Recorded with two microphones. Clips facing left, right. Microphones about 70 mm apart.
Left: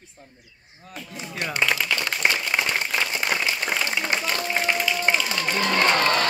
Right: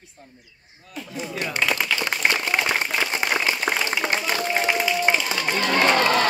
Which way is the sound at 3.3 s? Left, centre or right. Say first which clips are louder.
Right 3 dB; centre.